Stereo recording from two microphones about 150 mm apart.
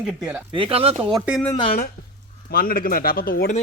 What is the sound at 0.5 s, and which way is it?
Speech, 40° right (ahead or behind).